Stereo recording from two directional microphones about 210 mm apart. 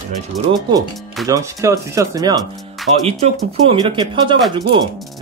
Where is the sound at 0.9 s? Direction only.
Centre (ahead or behind).